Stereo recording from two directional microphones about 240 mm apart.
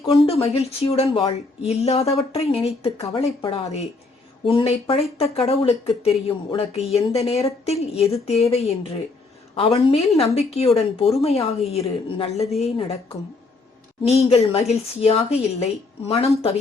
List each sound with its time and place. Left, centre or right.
0.0 s speech: left
14.1 s speech: left